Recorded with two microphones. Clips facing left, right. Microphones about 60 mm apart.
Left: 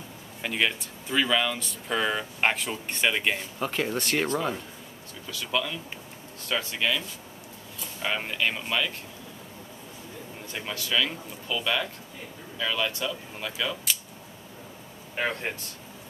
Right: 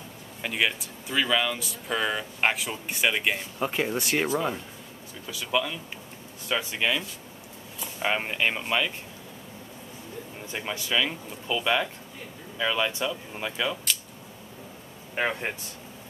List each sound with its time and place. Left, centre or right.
0.4 s speech: centre
3.6 s speech: centre
10.5 s speech: centre
13.9 s a sound: centre
15.1 s speech: centre